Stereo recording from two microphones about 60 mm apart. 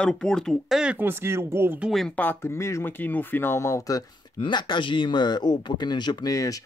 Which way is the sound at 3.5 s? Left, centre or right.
Left.